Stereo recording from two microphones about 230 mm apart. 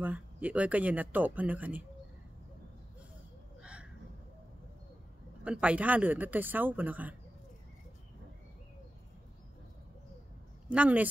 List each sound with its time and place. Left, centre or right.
0.0 s speech: centre
5.4 s speech: centre
10.7 s speech: centre